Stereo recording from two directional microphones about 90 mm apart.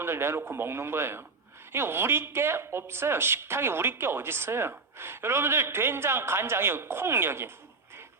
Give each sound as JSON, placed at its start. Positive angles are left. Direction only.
{"t": 0.0, "sound": "speech", "side_deg": -25}